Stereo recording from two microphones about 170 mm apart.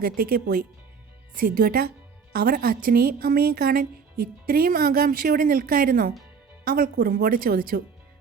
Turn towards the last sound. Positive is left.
turn(degrees=-60)  # may be behind; listen again after turning